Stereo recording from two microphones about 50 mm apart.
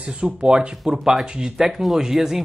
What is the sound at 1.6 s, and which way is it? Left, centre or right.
Speech, centre.